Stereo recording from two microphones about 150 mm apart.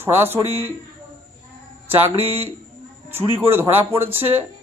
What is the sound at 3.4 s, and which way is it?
Speech, 15° right (ahead or behind).